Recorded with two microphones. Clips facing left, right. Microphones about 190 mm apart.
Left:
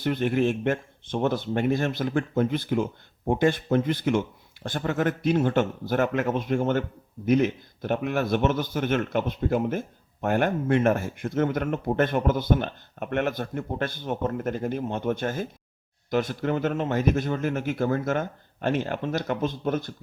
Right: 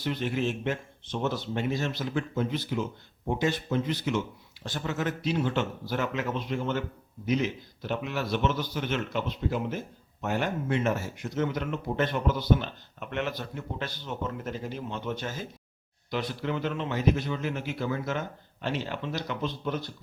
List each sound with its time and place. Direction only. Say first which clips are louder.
0.0 s a man's voice: left 6 dB; 55° left (ahead or behind)